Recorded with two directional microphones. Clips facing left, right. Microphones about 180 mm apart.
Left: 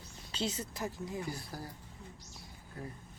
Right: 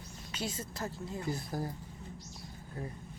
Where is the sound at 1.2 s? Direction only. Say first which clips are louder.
Right 4 dB; 20° right (ahead or behind).